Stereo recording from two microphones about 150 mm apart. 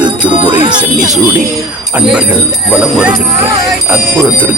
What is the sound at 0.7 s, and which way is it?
Speech, 5° right (ahead or behind).